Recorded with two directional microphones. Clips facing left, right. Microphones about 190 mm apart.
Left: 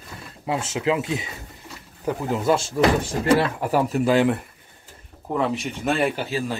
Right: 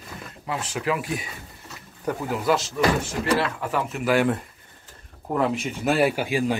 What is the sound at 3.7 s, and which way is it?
Speech, 35° left (ahead or behind).